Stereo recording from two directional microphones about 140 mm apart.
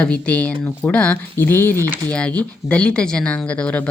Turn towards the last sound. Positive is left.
turn(degrees=10)  # may be behind; listen again after turning